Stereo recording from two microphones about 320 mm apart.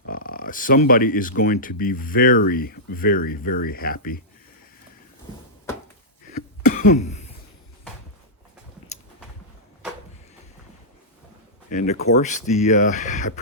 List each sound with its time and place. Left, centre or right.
0.0 s speech: left
6.3 s cough: left
11.7 s speech: left